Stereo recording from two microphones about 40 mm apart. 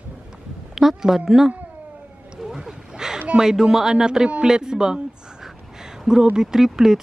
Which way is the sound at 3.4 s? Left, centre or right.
Centre.